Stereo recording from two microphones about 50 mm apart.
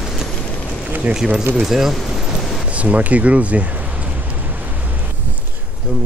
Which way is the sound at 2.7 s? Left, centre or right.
Right.